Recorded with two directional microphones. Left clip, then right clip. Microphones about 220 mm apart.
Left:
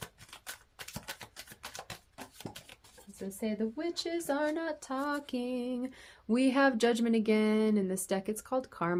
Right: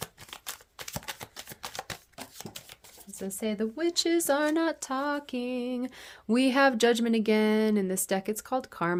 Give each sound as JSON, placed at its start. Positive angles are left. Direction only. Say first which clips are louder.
{"t": 1.7, "sound": "shuffling cards", "louder": "right 6 dB", "side_deg": -20}
{"t": 3.4, "sound": "a woman's voice", "louder": "right 5 dB", "side_deg": -45}
{"t": 4.9, "sound": "a sound", "louder": "right 4 dB", "side_deg": -20}